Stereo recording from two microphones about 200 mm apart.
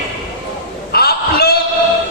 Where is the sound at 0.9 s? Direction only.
50° left (ahead or behind).